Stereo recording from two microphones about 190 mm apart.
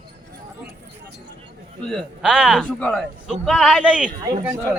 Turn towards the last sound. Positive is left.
turn(degrees=-10)  # may be behind; listen again after turning